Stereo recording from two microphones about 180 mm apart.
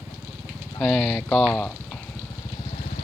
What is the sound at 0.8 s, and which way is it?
Speech, centre (ahead or behind).